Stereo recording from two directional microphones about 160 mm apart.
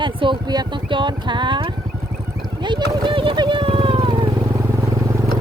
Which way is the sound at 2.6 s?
30° right (ahead or behind).